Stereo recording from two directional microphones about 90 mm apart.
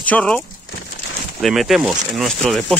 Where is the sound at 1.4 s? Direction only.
Centre (ahead or behind).